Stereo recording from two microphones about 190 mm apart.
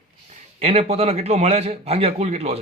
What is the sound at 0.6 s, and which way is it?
A man's voice, 30° right (ahead or behind).